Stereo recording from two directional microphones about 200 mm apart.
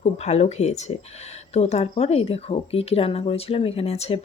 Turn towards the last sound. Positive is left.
turn(degrees=30)  # may be behind; listen again after turning